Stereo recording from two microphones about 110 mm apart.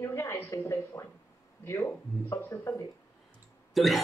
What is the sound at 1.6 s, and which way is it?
Speech, 25° left (ahead or behind).